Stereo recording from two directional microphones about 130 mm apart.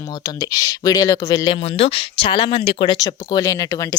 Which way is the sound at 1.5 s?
50° left (ahead or behind).